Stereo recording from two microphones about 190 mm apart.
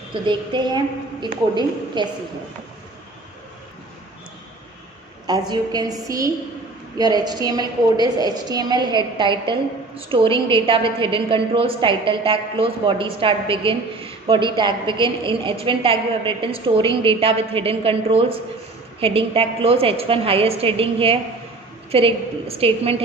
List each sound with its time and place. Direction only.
0.1 s a woman's voice: 25° right (ahead or behind)
2.0 s a woman's voice: 25° right (ahead or behind)
5.2 s a woman's voice: 20° right (ahead or behind)